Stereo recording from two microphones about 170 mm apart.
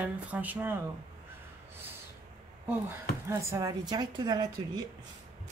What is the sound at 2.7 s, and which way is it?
Speech, 15° right (ahead or behind).